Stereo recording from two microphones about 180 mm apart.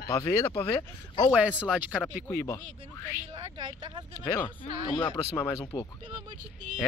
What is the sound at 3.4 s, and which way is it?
Speech, 25° right (ahead or behind).